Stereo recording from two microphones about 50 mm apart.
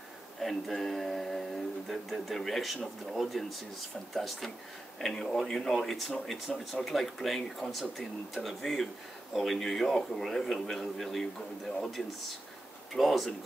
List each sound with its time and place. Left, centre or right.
0.4 s speech: centre